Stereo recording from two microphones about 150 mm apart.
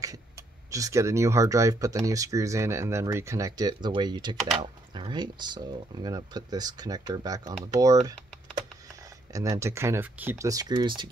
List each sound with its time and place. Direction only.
0.7 s speech: 20° right (ahead or behind)
9.3 s speech: 20° right (ahead or behind)